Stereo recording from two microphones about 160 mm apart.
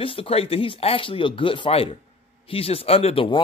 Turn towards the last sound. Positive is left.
turn(degrees=35)  # may be behind; listen again after turning